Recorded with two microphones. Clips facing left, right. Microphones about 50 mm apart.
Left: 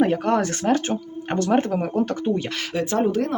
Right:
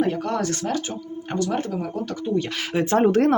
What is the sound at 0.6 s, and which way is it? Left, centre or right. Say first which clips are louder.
Speech: left 5 dB; left.